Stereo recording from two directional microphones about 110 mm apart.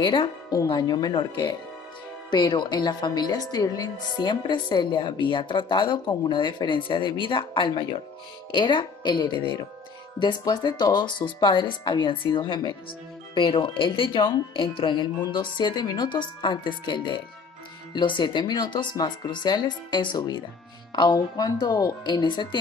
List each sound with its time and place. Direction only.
0.0 s a woman's voice: 50° left (ahead or behind)
0.5 s a woman's voice: 35° left (ahead or behind)